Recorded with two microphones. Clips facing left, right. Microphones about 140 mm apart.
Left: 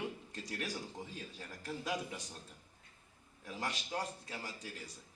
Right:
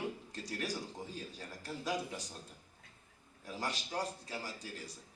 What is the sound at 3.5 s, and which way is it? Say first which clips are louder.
A man's voice: right 1 dB; 35° right (ahead or behind).